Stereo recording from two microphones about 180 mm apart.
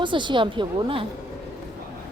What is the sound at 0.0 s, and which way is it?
A woman's voice, 25° right (ahead or behind).